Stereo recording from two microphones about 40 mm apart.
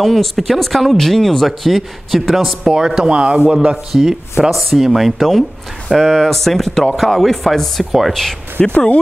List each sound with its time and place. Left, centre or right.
0.0 s speech: centre
2.6 s speech: centre
3.2 s speech: right
3.7 s speech: centre
4.5 s speech: centre
5.9 s speech: centre